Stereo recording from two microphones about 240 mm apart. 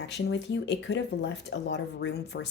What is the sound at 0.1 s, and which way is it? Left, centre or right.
Speech, left.